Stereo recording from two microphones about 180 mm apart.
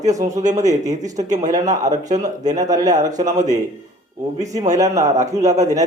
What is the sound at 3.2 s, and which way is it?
Speech, 40° right (ahead or behind).